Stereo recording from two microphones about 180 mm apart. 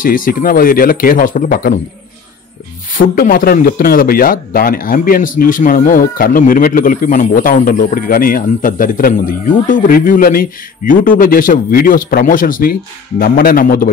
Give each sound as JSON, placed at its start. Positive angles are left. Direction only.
{"t": 0.0, "sound": "a man's voice", "side_deg": 50}
{"t": 3.0, "sound": "a man's voice", "side_deg": 50}